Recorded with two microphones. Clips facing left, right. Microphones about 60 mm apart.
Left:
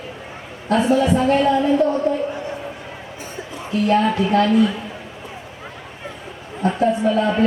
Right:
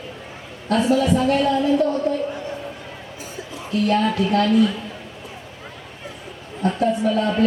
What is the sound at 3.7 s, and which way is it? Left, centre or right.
A man's voice, centre.